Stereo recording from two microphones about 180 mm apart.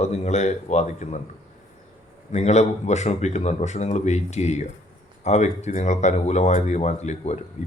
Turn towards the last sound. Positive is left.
turn(degrees=40)  # may be behind; listen again after turning